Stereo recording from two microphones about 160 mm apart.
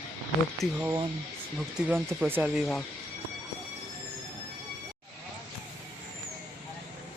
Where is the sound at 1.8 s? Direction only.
10° right (ahead or behind).